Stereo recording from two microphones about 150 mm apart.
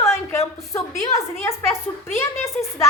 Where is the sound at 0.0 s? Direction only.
20° left (ahead or behind).